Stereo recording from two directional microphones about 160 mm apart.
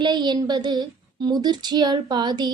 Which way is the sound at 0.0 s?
25° right (ahead or behind).